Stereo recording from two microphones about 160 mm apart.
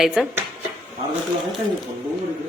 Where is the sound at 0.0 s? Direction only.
Centre (ahead or behind).